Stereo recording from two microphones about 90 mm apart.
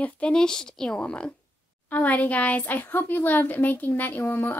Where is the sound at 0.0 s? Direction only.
10° left (ahead or behind).